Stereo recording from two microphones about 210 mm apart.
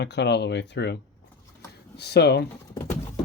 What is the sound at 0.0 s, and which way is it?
Speech, 55° left (ahead or behind).